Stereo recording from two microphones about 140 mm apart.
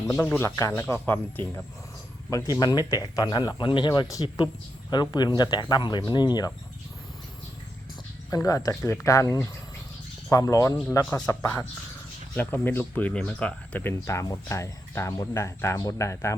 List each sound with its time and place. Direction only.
0.1 s speech: 15° left (ahead or behind)
2.3 s speech: 30° left (ahead or behind)
8.3 s speech: 25° left (ahead or behind)